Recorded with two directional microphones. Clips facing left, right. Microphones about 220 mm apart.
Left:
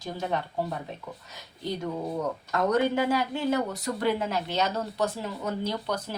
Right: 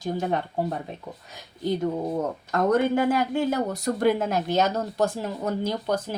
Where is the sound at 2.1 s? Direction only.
50° right (ahead or behind).